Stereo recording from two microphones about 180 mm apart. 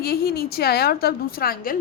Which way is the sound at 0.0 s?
60° left (ahead or behind).